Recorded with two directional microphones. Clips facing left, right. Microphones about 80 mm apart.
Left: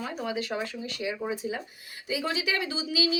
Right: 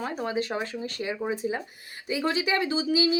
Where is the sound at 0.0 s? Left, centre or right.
Right.